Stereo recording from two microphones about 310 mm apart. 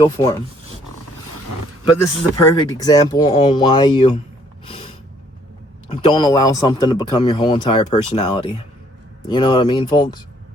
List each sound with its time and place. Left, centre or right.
0.0 s speech: centre
2.4 s speech: centre
4.7 s a sound: centre
5.9 s speech: centre